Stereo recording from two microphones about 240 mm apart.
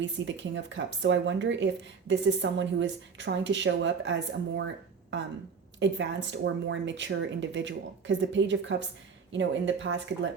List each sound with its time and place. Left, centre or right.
0.0 s speech: right
5.8 s speech: right